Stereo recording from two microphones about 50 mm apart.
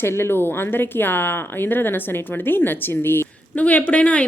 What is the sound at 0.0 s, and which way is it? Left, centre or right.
Speech, left.